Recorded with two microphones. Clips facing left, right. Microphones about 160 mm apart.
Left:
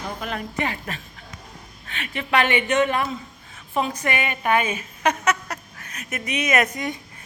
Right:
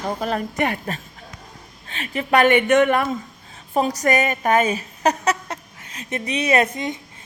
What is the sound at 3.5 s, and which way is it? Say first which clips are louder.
A woman's voice: right 4 dB; 35° right (ahead or behind).